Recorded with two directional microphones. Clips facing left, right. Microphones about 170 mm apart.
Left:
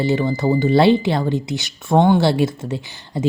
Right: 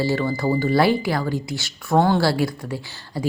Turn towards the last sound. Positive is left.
turn(degrees=20)  # may be behind; listen again after turning